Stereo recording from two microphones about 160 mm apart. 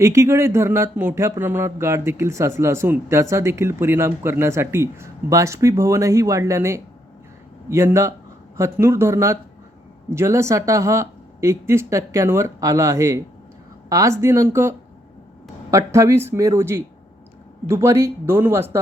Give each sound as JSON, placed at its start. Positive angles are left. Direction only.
{"t": 0.0, "sound": "speech", "side_deg": -20}